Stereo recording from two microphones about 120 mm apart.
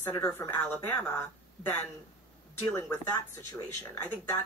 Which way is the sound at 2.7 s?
20° left (ahead or behind).